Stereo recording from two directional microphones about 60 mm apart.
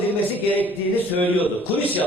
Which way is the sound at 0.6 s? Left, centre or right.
Left.